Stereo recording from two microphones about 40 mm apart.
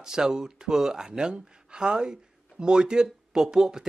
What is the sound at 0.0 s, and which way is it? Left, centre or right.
A man's voice, centre.